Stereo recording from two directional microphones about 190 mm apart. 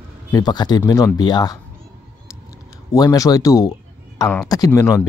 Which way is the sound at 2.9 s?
20° left (ahead or behind).